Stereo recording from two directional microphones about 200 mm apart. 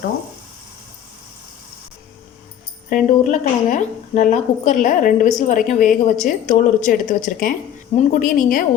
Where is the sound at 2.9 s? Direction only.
40° left (ahead or behind).